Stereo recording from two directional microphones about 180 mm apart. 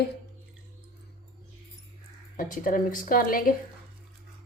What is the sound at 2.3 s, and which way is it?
A woman's voice, 50° left (ahead or behind).